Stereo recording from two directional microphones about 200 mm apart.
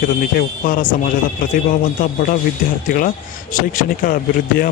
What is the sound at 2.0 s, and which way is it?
Speech, 45° left (ahead or behind).